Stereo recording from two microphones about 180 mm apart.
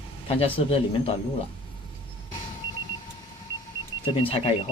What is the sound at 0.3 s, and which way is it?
Speech, 35° left (ahead or behind).